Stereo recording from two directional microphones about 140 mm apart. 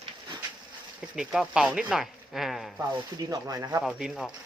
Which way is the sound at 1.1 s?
5° right (ahead or behind).